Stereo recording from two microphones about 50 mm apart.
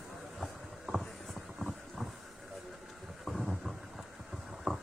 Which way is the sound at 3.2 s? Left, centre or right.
Centre.